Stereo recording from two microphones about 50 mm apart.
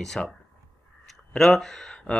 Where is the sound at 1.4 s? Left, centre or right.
Centre.